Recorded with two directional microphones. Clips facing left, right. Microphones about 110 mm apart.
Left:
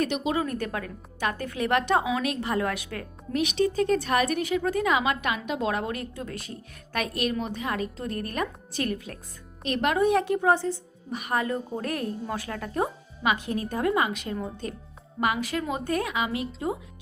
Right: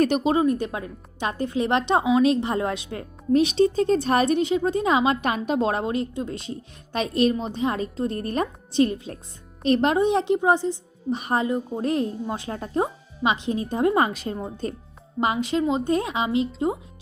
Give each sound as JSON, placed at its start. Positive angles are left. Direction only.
{"t": 0.0, "sound": "speech", "side_deg": -40}
{"t": 0.3, "sound": "a woman's voice", "side_deg": -20}
{"t": 11.1, "sound": "a woman's voice", "side_deg": -30}
{"t": 13.9, "sound": "a woman's voice", "side_deg": -35}